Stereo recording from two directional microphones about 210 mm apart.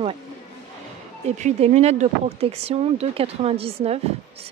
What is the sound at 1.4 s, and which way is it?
Speech, 30° right (ahead or behind).